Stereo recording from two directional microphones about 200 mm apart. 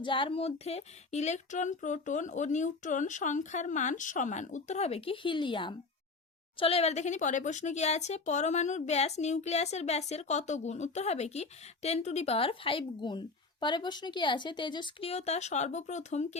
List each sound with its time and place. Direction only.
0.0 s speech: 25° left (ahead or behind)